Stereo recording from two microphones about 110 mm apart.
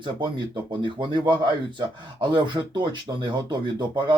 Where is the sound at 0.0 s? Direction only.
45° right (ahead or behind).